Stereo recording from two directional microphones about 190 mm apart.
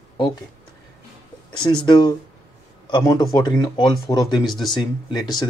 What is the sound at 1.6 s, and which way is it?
Speech, 25° left (ahead or behind).